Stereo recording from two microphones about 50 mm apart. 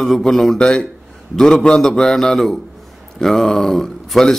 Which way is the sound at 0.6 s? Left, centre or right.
Centre.